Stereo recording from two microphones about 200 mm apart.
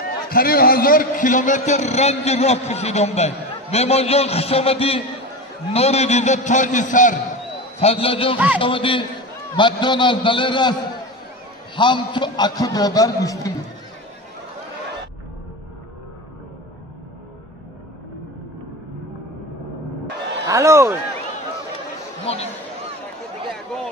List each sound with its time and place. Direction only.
0.0 s a man's voice: 50° left (ahead or behind)
7.8 s a man's voice: 30° left (ahead or behind)
20.4 s speech: 15° right (ahead or behind)
22.2 s speech: 30° left (ahead or behind)